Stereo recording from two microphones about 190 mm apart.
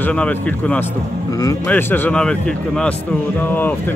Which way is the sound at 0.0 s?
5° left (ahead or behind).